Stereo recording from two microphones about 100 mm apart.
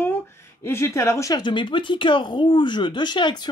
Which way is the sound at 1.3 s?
50° left (ahead or behind).